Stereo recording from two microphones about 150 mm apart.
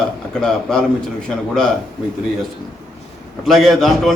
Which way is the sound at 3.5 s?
Centre (ahead or behind).